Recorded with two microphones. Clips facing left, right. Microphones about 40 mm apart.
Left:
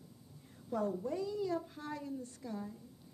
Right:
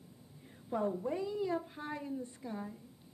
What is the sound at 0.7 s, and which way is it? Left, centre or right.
A woman's voice, right.